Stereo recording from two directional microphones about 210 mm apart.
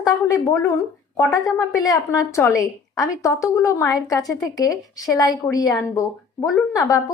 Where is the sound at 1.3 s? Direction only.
15° left (ahead or behind).